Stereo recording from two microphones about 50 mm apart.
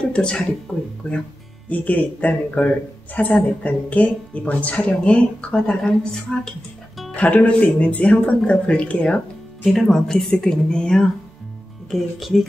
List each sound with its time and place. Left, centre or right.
0.1 s speech: centre
0.7 s speech: left
1.7 s speech: left
6.3 s a woman's voice: centre
7.2 s speech: left
9.7 s a woman's voice: centre
11.9 s speech: centre